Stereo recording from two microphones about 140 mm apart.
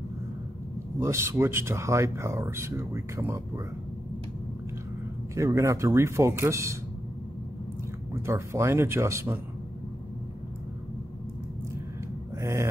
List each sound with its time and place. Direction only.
0.9 s speech: 20° right (ahead or behind)
5.3 s speech: 20° right (ahead or behind)
8.1 s speech: 20° right (ahead or behind)
12.4 s speech: 20° right (ahead or behind)